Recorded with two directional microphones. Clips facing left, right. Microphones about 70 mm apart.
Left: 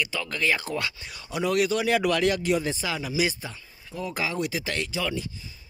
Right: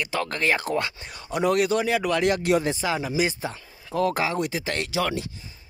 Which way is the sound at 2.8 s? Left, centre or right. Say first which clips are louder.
Right 3 dB; right.